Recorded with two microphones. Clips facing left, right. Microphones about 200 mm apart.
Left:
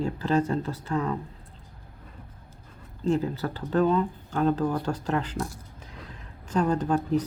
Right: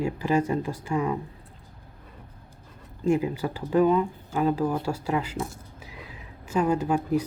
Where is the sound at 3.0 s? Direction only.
10° right (ahead or behind).